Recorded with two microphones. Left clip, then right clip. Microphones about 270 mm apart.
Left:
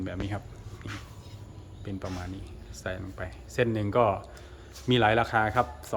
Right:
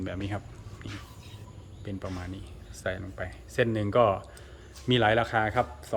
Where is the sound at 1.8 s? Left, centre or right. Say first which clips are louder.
Left 1 dB; centre.